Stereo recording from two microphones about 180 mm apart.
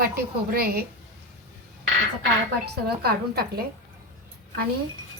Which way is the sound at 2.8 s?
60° right (ahead or behind).